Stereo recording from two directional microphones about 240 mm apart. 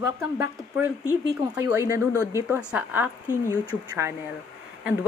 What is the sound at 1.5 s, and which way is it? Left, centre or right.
A woman's voice, centre.